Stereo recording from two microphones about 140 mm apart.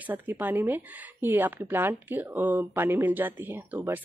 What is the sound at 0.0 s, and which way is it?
A woman's voice, 15° right (ahead or behind).